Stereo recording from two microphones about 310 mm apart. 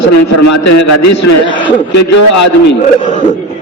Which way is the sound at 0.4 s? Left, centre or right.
Left.